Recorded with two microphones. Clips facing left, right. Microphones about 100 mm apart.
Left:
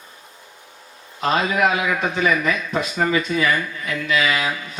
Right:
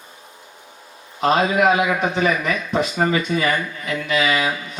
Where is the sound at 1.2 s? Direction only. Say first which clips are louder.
Right 3 dB; 30° right (ahead or behind).